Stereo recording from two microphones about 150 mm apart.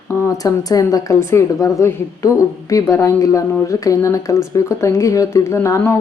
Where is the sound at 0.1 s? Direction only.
25° left (ahead or behind).